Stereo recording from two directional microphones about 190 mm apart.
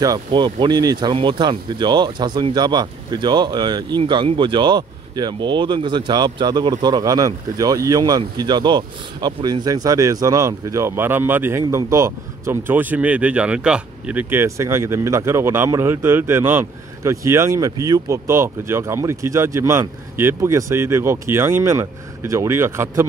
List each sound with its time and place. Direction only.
0.0 s speech: 20° right (ahead or behind)